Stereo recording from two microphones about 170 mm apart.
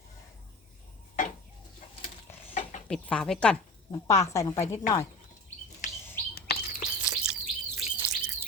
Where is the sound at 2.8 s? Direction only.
5° left (ahead or behind).